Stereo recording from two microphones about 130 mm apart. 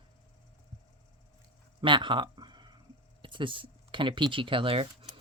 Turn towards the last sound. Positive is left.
turn(degrees=-45)  # may be behind; listen again after turning